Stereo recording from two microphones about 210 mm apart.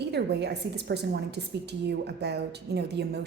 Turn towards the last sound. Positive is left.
turn(degrees=-50)  # may be behind; listen again after turning